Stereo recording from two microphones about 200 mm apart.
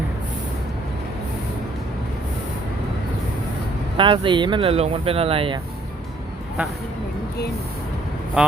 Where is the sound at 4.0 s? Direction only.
25° right (ahead or behind).